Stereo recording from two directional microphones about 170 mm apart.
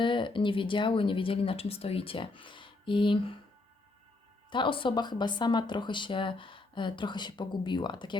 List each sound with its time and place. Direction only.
0.0 s speech: 30° left (ahead or behind)
4.5 s speech: 30° left (ahead or behind)